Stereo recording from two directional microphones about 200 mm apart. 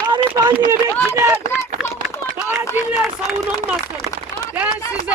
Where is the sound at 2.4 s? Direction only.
10° right (ahead or behind).